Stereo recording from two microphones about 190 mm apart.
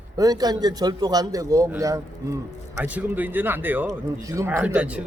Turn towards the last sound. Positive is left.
turn(degrees=-5)  # may be behind; listen again after turning